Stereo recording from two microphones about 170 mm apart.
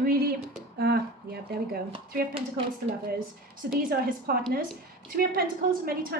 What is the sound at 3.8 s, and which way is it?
A woman's voice, 60° right (ahead or behind).